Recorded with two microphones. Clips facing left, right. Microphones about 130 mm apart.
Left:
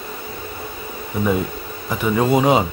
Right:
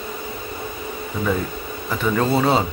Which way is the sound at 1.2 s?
10° left (ahead or behind).